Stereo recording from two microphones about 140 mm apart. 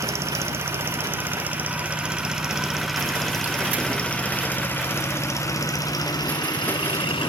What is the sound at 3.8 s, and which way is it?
Vehicle, 5° left (ahead or behind).